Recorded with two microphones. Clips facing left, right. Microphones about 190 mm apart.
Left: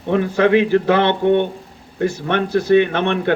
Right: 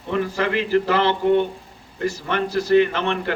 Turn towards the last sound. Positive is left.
turn(degrees=60)  # may be behind; listen again after turning